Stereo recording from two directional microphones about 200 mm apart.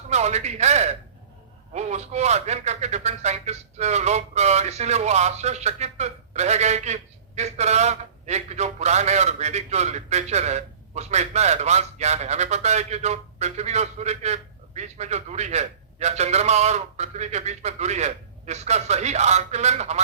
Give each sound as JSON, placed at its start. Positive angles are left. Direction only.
{"t": 0.1, "sound": "a man's voice", "side_deg": -35}